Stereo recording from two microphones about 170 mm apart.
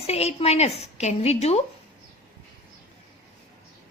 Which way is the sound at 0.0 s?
35° left (ahead or behind).